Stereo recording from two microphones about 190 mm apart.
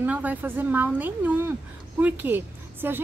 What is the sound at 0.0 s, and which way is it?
A woman's voice, 10° right (ahead or behind).